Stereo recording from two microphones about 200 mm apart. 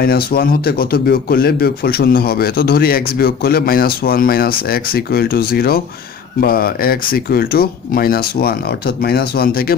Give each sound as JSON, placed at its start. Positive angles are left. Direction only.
{"t": 0.0, "sound": "speech", "side_deg": 50}